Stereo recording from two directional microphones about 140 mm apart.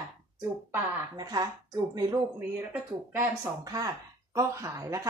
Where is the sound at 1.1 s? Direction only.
30° right (ahead or behind).